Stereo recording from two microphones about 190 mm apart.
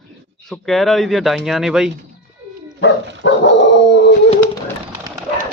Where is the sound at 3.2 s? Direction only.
70° left (ahead or behind).